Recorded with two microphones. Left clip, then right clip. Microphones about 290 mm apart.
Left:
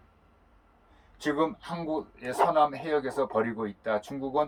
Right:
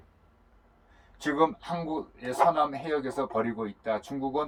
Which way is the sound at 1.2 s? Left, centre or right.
Centre.